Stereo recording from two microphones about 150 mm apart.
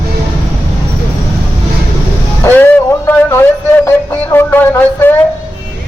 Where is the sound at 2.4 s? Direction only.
10° left (ahead or behind).